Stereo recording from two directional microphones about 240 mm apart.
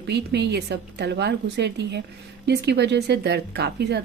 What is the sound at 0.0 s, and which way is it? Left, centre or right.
A woman's voice, right.